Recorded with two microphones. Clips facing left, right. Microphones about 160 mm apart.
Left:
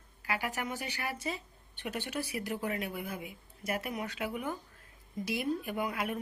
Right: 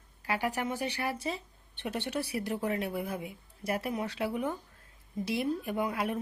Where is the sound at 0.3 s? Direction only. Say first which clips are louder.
Right 4 dB; 35° right (ahead or behind).